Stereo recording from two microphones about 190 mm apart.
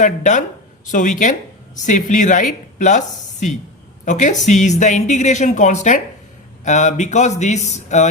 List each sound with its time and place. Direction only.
0.0 s a woman's voice: 40° left (ahead or behind)
4.0 s a woman's voice: 40° left (ahead or behind)